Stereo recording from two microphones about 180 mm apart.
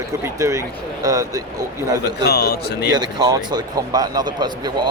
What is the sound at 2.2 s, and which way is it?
Speech, 60° left (ahead or behind).